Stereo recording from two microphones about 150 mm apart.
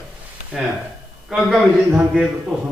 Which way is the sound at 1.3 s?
Centre (ahead or behind).